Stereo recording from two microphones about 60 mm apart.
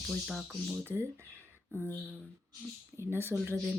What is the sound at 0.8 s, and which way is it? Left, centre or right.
Speech, right.